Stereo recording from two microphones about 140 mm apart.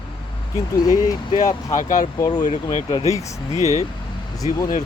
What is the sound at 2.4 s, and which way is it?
Speech, 55° left (ahead or behind).